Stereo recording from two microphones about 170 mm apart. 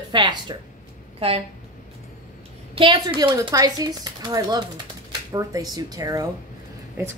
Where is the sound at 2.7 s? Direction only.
25° right (ahead or behind).